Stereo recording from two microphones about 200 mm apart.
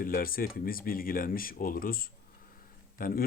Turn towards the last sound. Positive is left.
turn(degrees=45)  # may be behind; listen again after turning